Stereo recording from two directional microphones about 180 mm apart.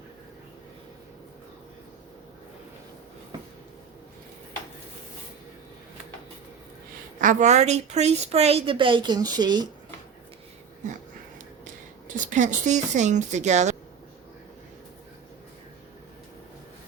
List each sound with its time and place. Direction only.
7.2 s a woman's voice: 45° right (ahead or behind); by 9.6 s 25° right (ahead or behind)
11.6 s speech: 45° right (ahead or behind)